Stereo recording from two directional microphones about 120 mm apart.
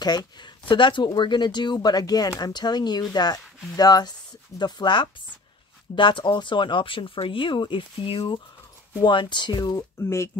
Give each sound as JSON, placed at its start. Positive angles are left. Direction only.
{"t": 0.0, "sound": "speech", "side_deg": 35}